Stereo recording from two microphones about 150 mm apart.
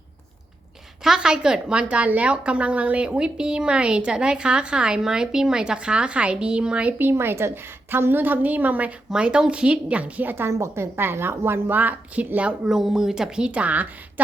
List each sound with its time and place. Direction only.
1.0 s a woman's voice: 5° right (ahead or behind)